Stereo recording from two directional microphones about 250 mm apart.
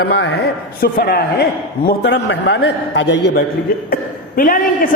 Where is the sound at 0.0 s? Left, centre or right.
Left.